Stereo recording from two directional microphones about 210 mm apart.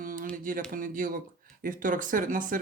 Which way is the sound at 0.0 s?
40° right (ahead or behind).